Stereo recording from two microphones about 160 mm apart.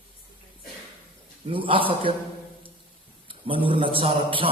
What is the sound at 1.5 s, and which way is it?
Speech, 35° right (ahead or behind).